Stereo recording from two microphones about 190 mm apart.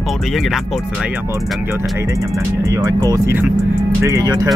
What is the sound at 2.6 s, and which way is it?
Speech, 15° right (ahead or behind).